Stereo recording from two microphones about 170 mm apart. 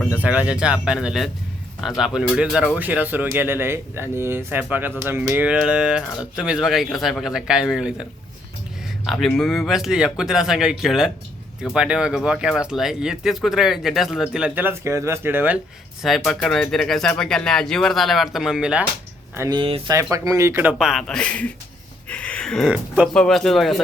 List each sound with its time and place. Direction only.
0.2 s speech: 10° right (ahead or behind)
9.0 s speech: 5° left (ahead or behind); by 15.5 s 10° right (ahead or behind)
16.0 s speech: centre (ahead or behind)
19.4 s speech: 25° right (ahead or behind)
19.9 s speech: 20° right (ahead or behind); by 21.5 s 5° left (ahead or behind)
22.1 s a sound: 5° left (ahead or behind)
23.1 s speech: 5° left (ahead or behind)